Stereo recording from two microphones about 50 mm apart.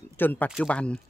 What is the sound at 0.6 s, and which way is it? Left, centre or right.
Speech, left.